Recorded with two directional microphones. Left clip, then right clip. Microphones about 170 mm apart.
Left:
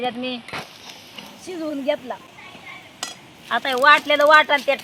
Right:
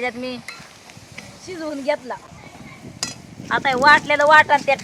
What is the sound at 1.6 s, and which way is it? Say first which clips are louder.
Speech: right 1 dB; 25° right (ahead or behind).